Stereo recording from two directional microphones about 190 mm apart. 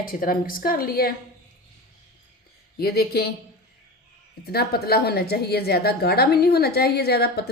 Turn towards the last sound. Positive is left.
turn(degrees=55)  # may be behind; listen again after turning